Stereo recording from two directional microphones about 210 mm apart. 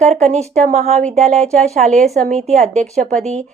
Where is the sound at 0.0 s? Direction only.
30° right (ahead or behind).